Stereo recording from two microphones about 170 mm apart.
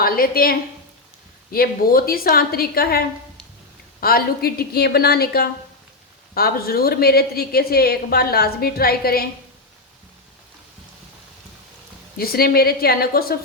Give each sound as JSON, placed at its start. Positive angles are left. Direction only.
{"t": 0.0, "sound": "speech", "side_deg": 60}
{"t": 1.5, "sound": "speech", "side_deg": 60}
{"t": 4.0, "sound": "speech", "side_deg": 65}
{"t": 12.1, "sound": "speech", "side_deg": 65}